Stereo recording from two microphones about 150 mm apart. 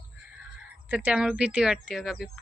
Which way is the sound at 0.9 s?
10° right (ahead or behind).